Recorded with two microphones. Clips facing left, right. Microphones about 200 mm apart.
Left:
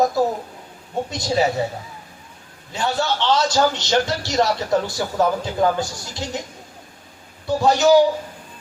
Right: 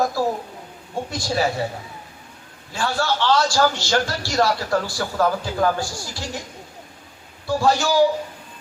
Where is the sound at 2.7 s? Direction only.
20° left (ahead or behind).